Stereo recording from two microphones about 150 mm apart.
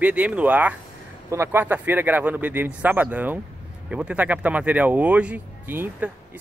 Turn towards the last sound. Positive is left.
turn(degrees=-10)  # may be behind; listen again after turning